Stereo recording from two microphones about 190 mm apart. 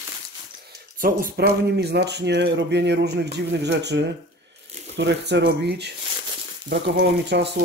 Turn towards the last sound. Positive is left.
turn(degrees=-65)  # may be behind; listen again after turning